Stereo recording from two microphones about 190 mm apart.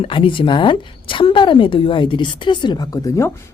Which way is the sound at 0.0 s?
25° left (ahead or behind).